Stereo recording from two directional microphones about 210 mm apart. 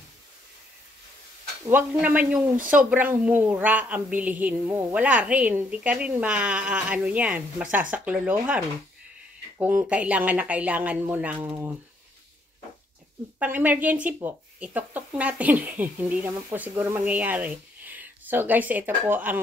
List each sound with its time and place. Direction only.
1.7 s a woman's voice: 10° right (ahead or behind)
2.5 s speech: 40° right (ahead or behind)
2.9 s a woman's voice: 10° right (ahead or behind)
13.4 s a woman's voice: 10° right (ahead or behind)